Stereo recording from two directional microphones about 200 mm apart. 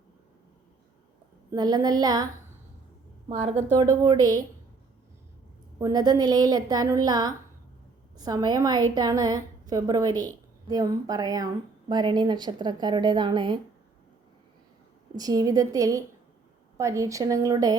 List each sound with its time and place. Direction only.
1.5 s a woman's voice: 20° right (ahead or behind)
3.2 s a woman's voice: 30° right (ahead or behind)
3.8 s a woman's voice: 20° right (ahead or behind)
5.8 s a woman's voice: 20° right (ahead or behind)
15.1 s a woman's voice: 20° right (ahead or behind)